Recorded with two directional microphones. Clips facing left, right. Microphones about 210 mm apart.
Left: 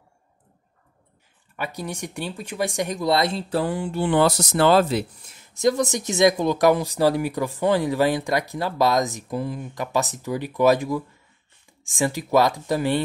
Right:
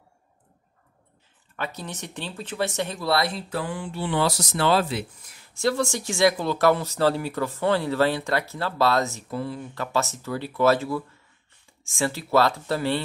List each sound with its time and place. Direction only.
1.6 s speech: 10° left (ahead or behind); by 5.0 s 45° left (ahead or behind)
5.4 s speech: 20° left (ahead or behind)